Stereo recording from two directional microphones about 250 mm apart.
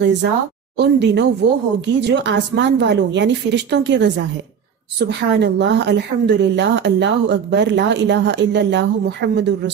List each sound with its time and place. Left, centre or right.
0.0 s a woman's voice: right